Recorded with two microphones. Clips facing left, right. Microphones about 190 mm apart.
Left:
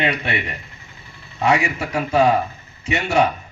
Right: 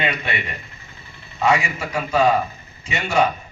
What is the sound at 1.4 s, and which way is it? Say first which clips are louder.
A man's voice: left 1 dB; 65° left (ahead or behind).